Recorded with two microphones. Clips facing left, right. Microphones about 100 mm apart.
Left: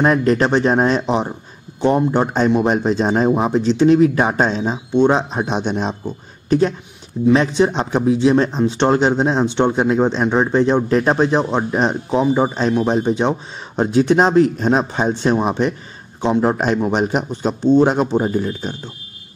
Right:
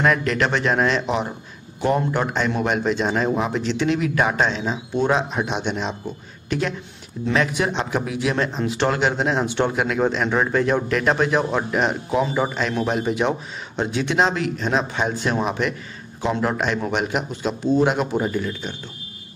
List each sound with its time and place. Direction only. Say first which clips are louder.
0.0 s speech: left 5 dB; 35° left (ahead or behind)
16.5 s speech: left 5 dB; 40° left (ahead or behind)